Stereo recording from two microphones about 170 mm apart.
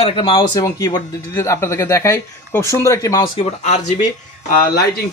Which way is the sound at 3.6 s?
45° left (ahead or behind).